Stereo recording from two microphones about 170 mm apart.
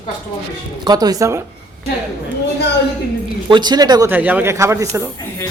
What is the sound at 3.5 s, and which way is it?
Speech, 25° right (ahead or behind).